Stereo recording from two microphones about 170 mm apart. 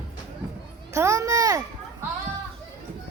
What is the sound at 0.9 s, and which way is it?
A child's voice, 15° right (ahead or behind).